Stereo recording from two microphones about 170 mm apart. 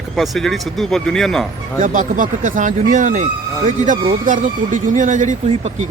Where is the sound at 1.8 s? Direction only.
50° right (ahead or behind).